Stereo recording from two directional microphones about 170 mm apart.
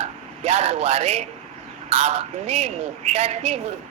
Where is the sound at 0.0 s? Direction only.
35° right (ahead or behind).